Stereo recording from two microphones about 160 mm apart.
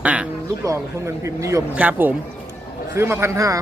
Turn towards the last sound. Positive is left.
turn(degrees=-20)  # may be behind; listen again after turning